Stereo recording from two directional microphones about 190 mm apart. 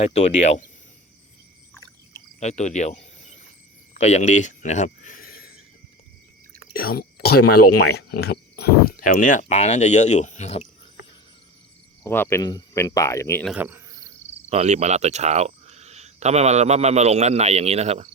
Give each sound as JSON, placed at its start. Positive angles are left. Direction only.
{"t": 0.0, "sound": "speech", "side_deg": 35}
{"t": 2.4, "sound": "speech", "side_deg": 35}
{"t": 6.7, "sound": "speech", "side_deg": 50}
{"t": 12.0, "sound": "speech", "side_deg": 10}
{"t": 13.4, "sound": "cricket", "side_deg": -5}
{"t": 14.5, "sound": "speech", "side_deg": -35}